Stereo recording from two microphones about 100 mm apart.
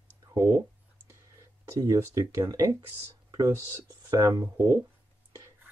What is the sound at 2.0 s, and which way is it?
Speech, 35° right (ahead or behind).